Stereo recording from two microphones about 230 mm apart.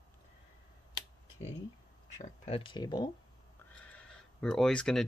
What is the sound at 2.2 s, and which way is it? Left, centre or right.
Speech, left.